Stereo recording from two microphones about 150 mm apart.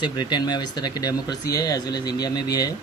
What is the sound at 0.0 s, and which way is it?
Speech, 30° left (ahead or behind).